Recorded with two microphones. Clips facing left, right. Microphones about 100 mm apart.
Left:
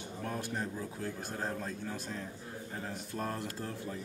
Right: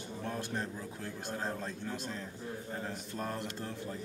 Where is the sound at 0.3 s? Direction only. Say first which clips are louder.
Left 1 dB; 5° left (ahead or behind).